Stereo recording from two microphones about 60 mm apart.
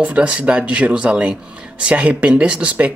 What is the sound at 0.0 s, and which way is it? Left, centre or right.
Speech, centre.